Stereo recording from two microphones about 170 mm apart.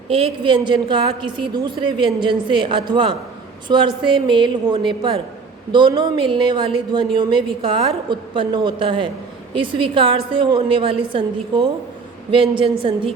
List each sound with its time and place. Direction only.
0.1 s a woman's voice: 35° right (ahead or behind)